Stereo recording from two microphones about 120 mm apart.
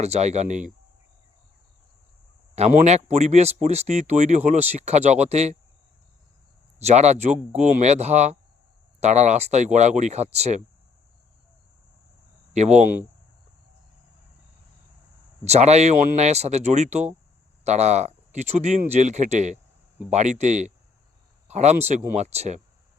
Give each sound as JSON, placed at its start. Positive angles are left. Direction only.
{"t": 0.0, "sound": "speech", "side_deg": -65}
{"t": 2.6, "sound": "speech", "side_deg": -65}
{"t": 6.7, "sound": "speech", "side_deg": -65}
{"t": 12.5, "sound": "speech", "side_deg": -70}
{"t": 15.4, "sound": "speech", "side_deg": -65}